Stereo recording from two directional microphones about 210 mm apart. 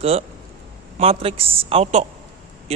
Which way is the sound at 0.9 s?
25° right (ahead or behind).